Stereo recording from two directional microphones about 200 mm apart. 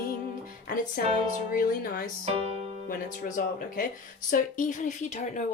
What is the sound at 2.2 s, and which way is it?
Speech, 30° right (ahead or behind).